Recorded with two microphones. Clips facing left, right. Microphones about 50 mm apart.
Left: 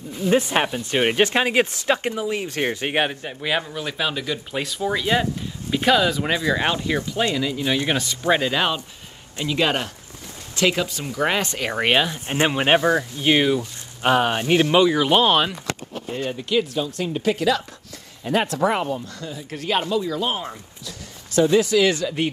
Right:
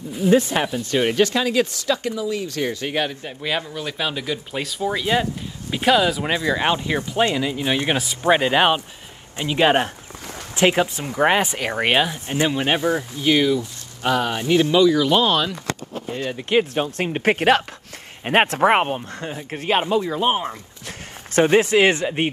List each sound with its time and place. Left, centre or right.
0.3 s speech: left
3.3 s speech: centre
6.7 s speech: right
7.9 s speech: centre
8.3 s speech: right
11.4 s speech: centre
12.3 s speech: left
16.3 s speech: right
19.0 s speech: right